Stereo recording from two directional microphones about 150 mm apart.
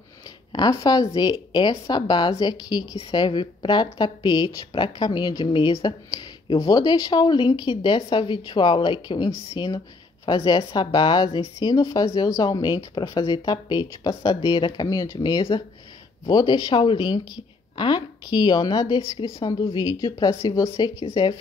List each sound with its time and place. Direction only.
0.5 s a woman's voice: 30° left (ahead or behind)